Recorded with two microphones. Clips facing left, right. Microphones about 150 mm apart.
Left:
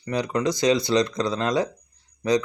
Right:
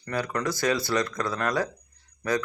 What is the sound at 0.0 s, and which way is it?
Speech, 20° left (ahead or behind).